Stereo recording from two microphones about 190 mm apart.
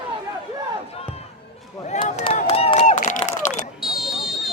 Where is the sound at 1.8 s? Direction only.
35° left (ahead or behind).